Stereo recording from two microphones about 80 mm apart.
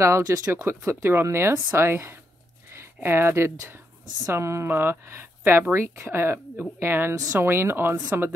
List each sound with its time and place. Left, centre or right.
0.0 s speech: right